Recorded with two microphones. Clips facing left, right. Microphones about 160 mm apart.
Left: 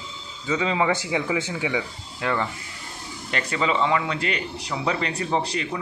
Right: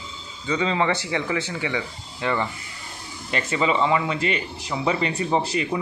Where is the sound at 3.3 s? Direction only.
5° right (ahead or behind).